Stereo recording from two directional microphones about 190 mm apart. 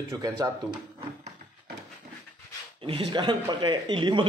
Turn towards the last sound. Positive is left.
turn(degrees=-25)  # may be behind; listen again after turning